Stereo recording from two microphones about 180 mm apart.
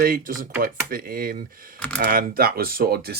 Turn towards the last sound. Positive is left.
turn(degrees=-60)  # may be behind; listen again after turning